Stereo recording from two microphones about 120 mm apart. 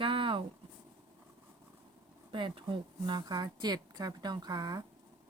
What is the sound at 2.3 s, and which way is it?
Speech, 45° right (ahead or behind).